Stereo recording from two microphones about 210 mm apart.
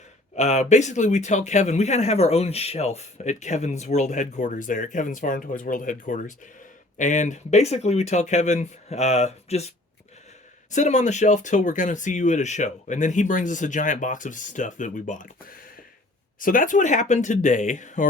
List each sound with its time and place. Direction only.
0.3 s speech: 30° left (ahead or behind)